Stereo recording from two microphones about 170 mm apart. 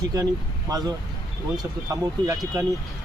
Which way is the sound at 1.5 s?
20° right (ahead or behind).